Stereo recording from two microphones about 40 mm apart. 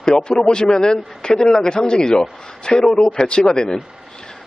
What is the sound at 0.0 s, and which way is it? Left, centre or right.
Speech, left.